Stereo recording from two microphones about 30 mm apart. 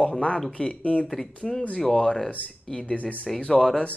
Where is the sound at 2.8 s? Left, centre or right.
Left.